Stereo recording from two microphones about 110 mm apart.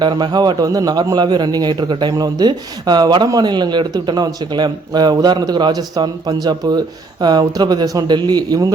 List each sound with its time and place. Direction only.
0.0 s speech: 40° right (ahead or behind)